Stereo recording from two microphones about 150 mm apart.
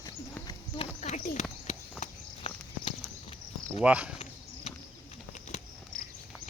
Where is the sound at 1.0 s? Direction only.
50° left (ahead or behind).